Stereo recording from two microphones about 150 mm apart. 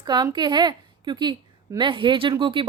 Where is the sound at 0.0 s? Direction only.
30° right (ahead or behind).